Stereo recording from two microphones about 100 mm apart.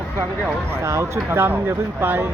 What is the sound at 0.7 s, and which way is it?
Speech, 30° right (ahead or behind).